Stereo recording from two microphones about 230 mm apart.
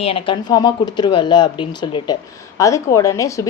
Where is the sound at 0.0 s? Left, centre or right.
Left.